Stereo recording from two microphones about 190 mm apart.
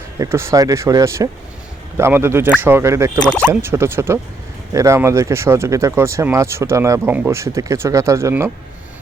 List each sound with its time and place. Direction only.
0.2 s speech: 15° right (ahead or behind)